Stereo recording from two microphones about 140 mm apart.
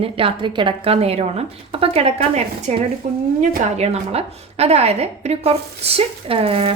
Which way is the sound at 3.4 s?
55° right (ahead or behind).